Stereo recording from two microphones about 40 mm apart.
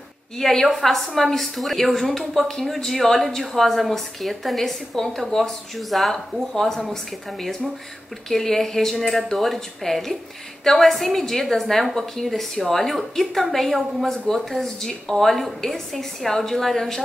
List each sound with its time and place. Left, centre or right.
0.4 s a woman's voice: centre
8.3 s a woman's voice: centre
14.1 s a woman's voice: centre